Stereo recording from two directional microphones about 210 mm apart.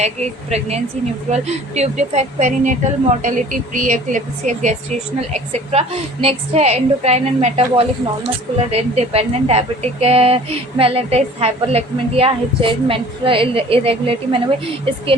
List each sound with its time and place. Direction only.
0.0 s a woman's voice: 30° right (ahead or behind)